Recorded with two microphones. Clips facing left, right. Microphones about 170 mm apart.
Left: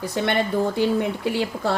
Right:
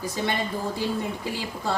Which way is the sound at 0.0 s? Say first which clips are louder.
Left 5 dB; 65° left (ahead or behind).